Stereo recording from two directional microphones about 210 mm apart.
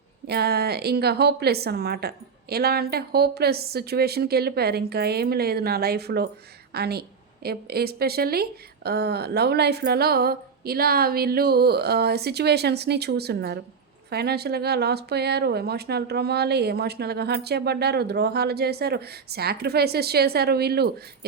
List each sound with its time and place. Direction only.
0.3 s speech: 50° right (ahead or behind)